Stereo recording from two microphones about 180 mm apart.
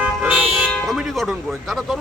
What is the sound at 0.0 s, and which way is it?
Car alarm, 5° right (ahead or behind).